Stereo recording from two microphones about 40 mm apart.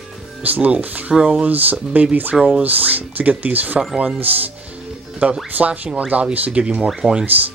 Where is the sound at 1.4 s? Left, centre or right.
Right.